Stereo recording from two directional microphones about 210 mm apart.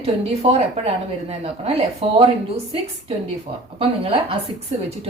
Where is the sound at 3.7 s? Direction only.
25° right (ahead or behind).